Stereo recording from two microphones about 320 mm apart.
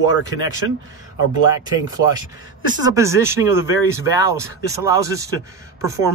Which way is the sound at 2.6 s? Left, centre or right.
Centre.